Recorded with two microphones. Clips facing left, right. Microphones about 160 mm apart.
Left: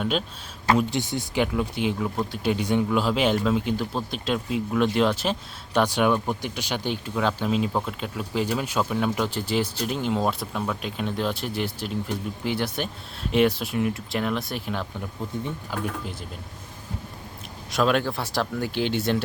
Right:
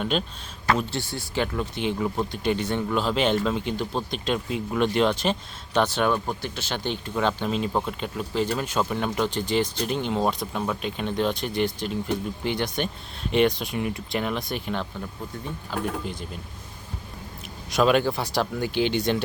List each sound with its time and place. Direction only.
0.0 s speech: centre (ahead or behind)
0.8 s speech: 15° left (ahead or behind)
1.5 s speech: 5° left (ahead or behind)
17.7 s speech: centre (ahead or behind)